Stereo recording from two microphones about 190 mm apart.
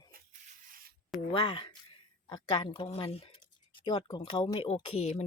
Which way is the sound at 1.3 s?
30° left (ahead or behind).